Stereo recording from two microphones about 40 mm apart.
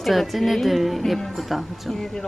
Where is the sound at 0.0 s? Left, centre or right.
Centre.